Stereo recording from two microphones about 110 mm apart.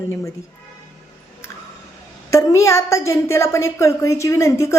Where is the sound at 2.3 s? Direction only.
30° left (ahead or behind).